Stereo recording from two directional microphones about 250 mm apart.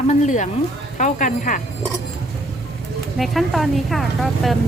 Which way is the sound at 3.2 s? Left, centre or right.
Centre.